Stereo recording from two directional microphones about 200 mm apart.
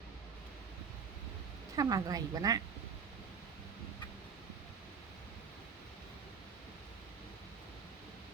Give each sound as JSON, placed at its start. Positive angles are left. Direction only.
{"t": 1.7, "sound": "a woman's voice", "side_deg": -15}